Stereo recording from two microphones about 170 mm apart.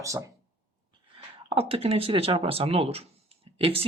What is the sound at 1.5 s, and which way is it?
Speech, 35° right (ahead or behind).